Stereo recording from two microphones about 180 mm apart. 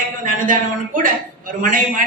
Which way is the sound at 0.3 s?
50° right (ahead or behind).